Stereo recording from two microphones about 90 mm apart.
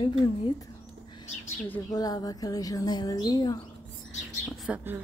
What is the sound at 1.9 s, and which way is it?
A woman's voice, 45° left (ahead or behind).